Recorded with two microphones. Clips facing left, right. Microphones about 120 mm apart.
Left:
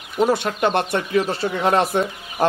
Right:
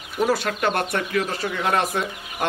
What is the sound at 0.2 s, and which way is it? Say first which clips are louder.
Speech: left 3 dB; 25° left (ahead or behind).